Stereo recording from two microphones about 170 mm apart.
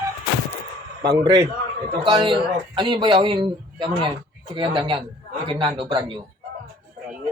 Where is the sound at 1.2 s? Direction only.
25° right (ahead or behind).